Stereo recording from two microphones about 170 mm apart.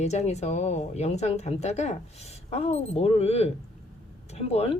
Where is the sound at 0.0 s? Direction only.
40° left (ahead or behind).